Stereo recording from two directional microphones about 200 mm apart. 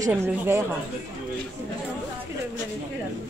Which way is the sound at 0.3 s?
10° right (ahead or behind).